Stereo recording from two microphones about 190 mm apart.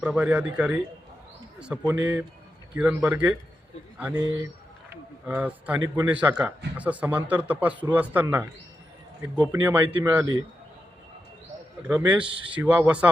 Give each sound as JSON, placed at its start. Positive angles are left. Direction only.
{"t": 0.0, "sound": "speech", "side_deg": -5}
{"t": 5.2, "sound": "speech", "side_deg": -10}
{"t": 11.8, "sound": "speech", "side_deg": -10}
{"t": 12.2, "sound": "speech", "side_deg": -25}
{"t": 12.5, "sound": "speech", "side_deg": -5}